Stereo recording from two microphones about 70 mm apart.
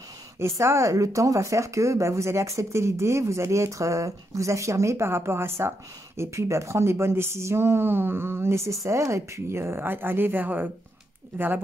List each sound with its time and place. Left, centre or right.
0.4 s speech: right